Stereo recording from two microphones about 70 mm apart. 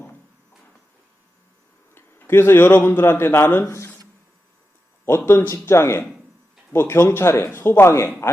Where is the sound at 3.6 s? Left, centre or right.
Left.